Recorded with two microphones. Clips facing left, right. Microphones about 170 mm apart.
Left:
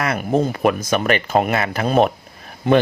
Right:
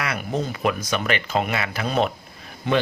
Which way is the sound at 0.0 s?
45° left (ahead or behind).